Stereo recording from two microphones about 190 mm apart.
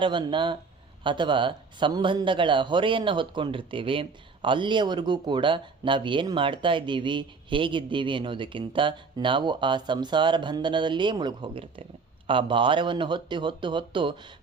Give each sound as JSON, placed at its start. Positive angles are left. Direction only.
{"t": 0.0, "sound": "speech", "side_deg": -25}